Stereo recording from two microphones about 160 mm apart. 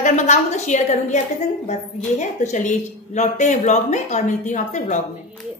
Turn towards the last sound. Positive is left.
turn(degrees=50)  # may be behind; listen again after turning